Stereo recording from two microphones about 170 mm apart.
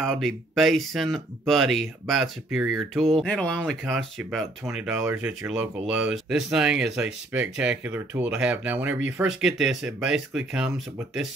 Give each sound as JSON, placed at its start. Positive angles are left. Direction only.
{"t": 0.0, "sound": "speech", "side_deg": 5}